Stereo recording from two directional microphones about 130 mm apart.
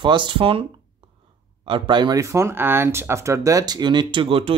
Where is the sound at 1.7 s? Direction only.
35° right (ahead or behind).